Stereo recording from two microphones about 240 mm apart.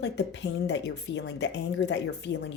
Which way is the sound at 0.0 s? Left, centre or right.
Left.